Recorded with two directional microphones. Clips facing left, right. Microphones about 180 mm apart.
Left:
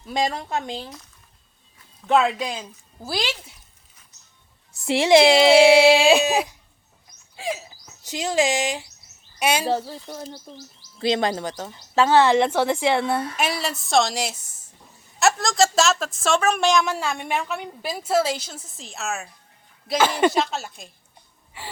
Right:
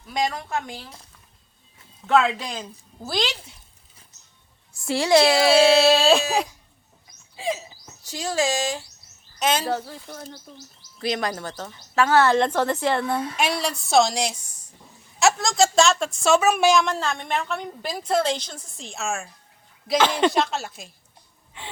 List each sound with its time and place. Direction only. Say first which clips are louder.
0.1 s speech: left 1 dB; 25° left (ahead or behind)
2.0 s speech: left 1 dB; 10° left (ahead or behind)
4.9 s speech: left 3 dB; 20° left (ahead or behind)
7.3 s a sound: right 1 dB; centre (ahead or behind)
8.0 s speech: left 2 dB; 20° left (ahead or behind)
9.6 s a woman's voice: left 3 dB; 30° left (ahead or behind); by 20.9 s centre (ahead or behind)